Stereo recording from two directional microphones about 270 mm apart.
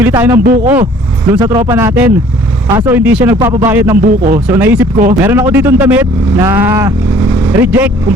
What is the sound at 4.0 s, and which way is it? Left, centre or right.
Speech, right.